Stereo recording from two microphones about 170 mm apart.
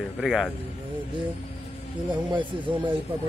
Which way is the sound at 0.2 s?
5° right (ahead or behind).